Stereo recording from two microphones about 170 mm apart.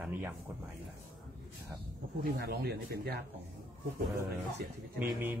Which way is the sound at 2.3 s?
70° right (ahead or behind).